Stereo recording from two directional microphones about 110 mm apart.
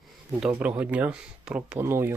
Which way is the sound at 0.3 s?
10° right (ahead or behind).